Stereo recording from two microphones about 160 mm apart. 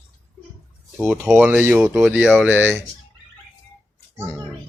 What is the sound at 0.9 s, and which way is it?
Speech, 10° right (ahead or behind).